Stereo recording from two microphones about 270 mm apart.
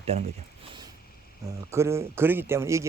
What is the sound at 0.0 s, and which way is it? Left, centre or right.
Speech, right.